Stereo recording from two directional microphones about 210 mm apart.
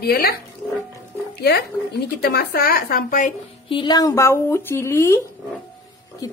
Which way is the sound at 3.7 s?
20° left (ahead or behind).